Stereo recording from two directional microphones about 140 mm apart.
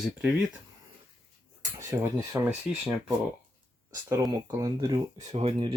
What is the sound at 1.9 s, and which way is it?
Speech, 25° right (ahead or behind).